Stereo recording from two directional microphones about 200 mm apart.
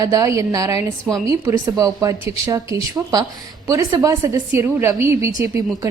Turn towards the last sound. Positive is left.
turn(degrees=-15)  # may be behind; listen again after turning